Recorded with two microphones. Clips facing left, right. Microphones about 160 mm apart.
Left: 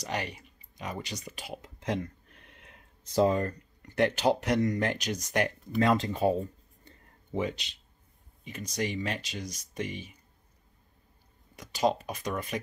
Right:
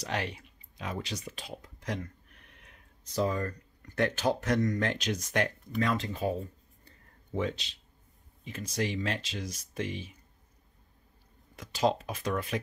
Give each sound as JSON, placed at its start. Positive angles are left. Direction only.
{"t": 0.0, "sound": "speech", "side_deg": 0}
{"t": 1.6, "sound": "a sound", "side_deg": 25}
{"t": 4.6, "sound": "speech", "side_deg": 15}
{"t": 5.1, "sound": "speech", "side_deg": -5}
{"t": 5.8, "sound": "speech", "side_deg": 35}
{"t": 7.5, "sound": "speech", "side_deg": 0}
{"t": 11.5, "sound": "speech", "side_deg": 0}